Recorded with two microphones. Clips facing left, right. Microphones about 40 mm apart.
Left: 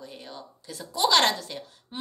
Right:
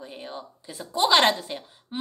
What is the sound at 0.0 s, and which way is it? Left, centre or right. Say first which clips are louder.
A woman's voice: right 4 dB; right.